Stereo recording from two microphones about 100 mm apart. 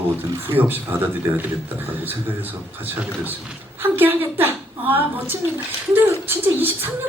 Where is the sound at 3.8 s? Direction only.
20° right (ahead or behind).